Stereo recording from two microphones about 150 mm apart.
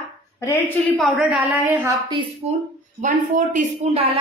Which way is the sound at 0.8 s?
Centre (ahead or behind).